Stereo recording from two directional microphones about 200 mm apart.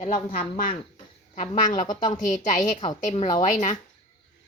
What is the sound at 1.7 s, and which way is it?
Speech, 40° left (ahead or behind).